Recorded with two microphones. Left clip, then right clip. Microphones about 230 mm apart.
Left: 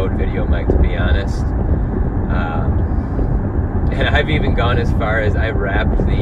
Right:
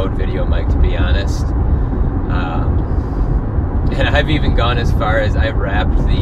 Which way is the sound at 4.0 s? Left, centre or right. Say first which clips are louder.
Right 1 dB; right.